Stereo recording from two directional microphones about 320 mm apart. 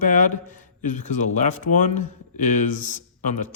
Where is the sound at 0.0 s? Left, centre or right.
Left.